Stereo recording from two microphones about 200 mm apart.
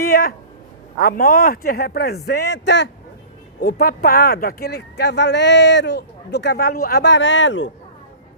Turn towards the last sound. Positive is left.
turn(degrees=65)  # may be behind; listen again after turning